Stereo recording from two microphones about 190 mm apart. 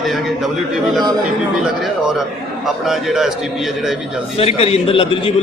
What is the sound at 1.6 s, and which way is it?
A man's voice, centre (ahead or behind).